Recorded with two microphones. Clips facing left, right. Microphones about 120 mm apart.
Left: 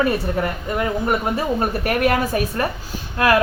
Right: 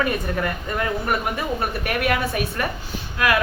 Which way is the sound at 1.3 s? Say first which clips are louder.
Left 4 dB; 40° left (ahead or behind).